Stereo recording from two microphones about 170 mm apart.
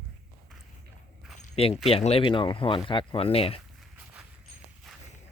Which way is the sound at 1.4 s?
35° left (ahead or behind).